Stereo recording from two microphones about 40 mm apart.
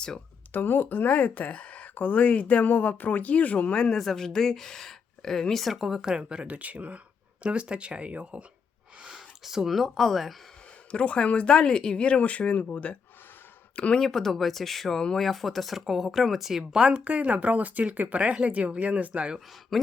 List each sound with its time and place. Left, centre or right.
0.5 s speech: left
2.6 s speech: left
3.9 s speech: centre
5.8 s speech: centre
6.5 s speech: right
9.1 s speech: centre
10.9 s speech: left
12.0 s speech: left
14.0 s speech: centre
16.7 s speech: right
19.7 s speech: centre